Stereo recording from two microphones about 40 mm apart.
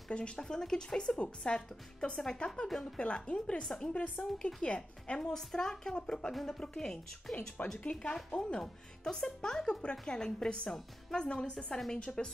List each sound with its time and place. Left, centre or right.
0.4 s speech: centre
7.6 s speech: left
7.9 s speech: left
12.2 s speech: centre